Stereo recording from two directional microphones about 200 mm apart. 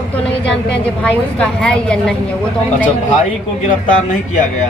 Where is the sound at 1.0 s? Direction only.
5° left (ahead or behind).